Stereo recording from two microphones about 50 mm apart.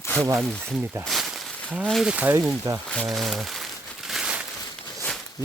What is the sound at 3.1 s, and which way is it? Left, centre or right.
Crumpling, centre.